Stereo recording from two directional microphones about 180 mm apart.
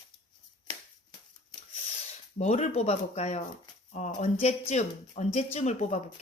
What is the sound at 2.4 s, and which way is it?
Speech, 35° left (ahead or behind).